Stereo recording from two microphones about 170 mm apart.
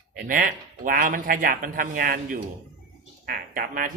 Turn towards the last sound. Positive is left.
turn(degrees=-55)  # may be behind; listen again after turning